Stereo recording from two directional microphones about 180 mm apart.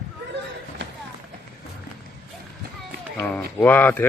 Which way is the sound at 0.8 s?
90° right.